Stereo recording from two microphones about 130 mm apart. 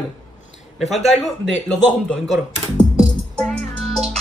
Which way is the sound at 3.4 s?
5° left (ahead or behind).